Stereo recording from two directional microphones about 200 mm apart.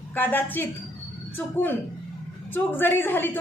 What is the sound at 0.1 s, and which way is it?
A woman's voice, 10° left (ahead or behind).